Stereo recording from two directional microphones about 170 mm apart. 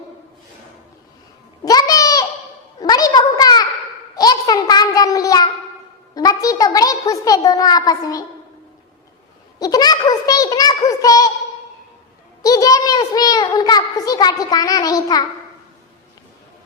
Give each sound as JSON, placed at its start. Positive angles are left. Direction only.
{"t": 1.6, "sound": "a sound", "side_deg": 20}
{"t": 9.6, "sound": "a woman's voice", "side_deg": 20}
{"t": 12.4, "sound": "a child's voice", "side_deg": 20}